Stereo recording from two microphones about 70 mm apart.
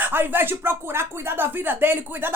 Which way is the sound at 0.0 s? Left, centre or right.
Right.